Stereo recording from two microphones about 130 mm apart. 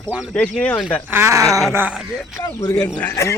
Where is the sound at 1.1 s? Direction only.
20° right (ahead or behind).